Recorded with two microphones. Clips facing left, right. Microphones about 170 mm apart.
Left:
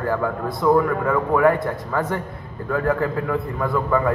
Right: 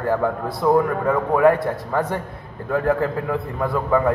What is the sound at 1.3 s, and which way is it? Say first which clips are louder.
A man's voice: right 2 dB; 20° right (ahead or behind).